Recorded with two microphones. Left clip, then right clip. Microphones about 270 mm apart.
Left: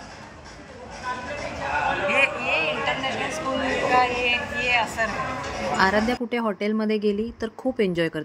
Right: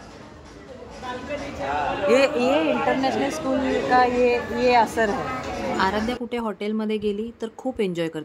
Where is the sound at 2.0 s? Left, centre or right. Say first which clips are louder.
Right 7 dB; right.